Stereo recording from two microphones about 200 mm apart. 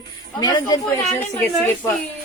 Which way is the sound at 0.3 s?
20° left (ahead or behind).